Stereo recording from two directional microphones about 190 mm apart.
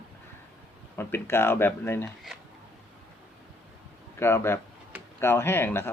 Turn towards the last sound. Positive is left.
turn(degrees=10)  # may be behind; listen again after turning